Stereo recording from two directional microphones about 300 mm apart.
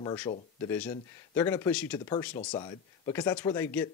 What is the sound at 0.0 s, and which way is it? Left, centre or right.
Speech, centre.